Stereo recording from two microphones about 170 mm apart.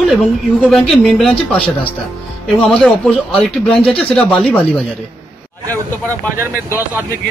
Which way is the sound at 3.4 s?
5° left (ahead or behind).